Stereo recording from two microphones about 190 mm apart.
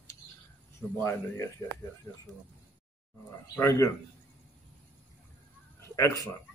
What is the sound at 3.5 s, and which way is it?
Speech, 15° left (ahead or behind).